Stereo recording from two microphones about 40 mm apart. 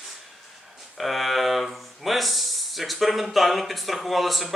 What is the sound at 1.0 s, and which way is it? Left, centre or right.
Speech, centre.